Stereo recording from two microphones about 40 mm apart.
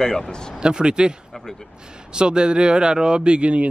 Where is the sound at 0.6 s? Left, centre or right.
Right.